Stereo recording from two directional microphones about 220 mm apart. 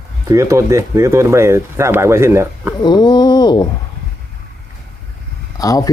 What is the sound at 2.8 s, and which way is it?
Speech, 20° left (ahead or behind).